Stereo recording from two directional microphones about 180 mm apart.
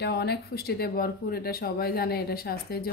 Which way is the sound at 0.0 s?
65° left (ahead or behind).